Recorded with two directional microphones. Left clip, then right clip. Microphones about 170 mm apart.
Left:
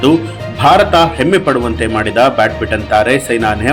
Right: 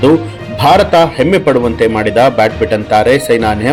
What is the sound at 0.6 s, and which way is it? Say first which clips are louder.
A man's voice: right 1 dB; 35° right (ahead or behind).